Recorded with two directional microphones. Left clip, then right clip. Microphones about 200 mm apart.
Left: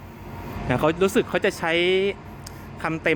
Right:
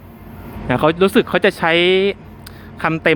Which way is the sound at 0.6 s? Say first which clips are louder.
Right 6 dB; 5° right (ahead or behind).